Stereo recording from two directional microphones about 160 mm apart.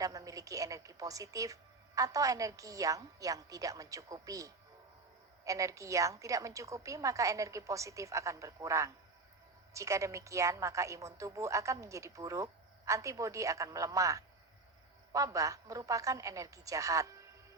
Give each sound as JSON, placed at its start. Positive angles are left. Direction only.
{"t": 0.0, "sound": "a woman's voice", "side_deg": -20}